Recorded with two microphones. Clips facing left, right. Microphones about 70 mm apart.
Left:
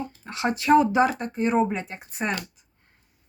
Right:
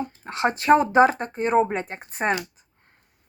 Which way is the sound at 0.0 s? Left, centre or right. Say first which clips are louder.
Right 3 dB; right.